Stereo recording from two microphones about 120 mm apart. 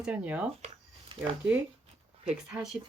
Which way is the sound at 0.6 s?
55° right (ahead or behind).